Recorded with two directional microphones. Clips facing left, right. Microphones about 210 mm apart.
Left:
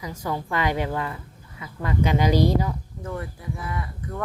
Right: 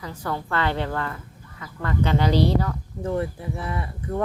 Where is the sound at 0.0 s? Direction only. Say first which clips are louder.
Left 1 dB; 10° left (ahead or behind).